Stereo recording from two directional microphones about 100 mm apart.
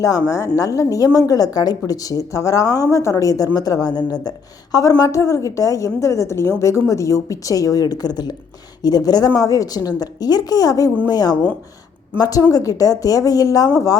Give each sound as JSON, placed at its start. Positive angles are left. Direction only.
{"t": 0.0, "sound": "speech", "side_deg": 35}